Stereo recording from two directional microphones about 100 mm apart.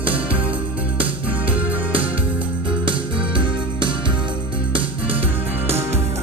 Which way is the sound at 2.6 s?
55° right (ahead or behind).